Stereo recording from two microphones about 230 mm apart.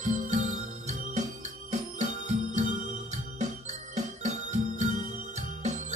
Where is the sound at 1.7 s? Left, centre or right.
Right.